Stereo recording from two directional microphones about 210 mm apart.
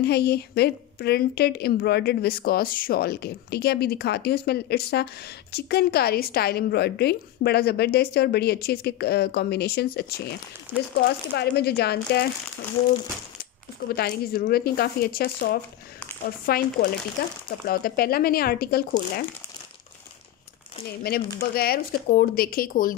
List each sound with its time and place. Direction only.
0.0 s a woman's voice: 50° left (ahead or behind)
10.7 s speech: 10° right (ahead or behind)
11.3 s a woman's voice: 50° left (ahead or behind)
13.9 s a woman's voice: 45° left (ahead or behind)
21.0 s a woman's voice: 45° left (ahead or behind)